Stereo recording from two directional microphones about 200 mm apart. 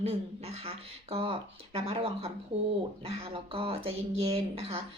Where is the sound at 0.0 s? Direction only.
30° right (ahead or behind).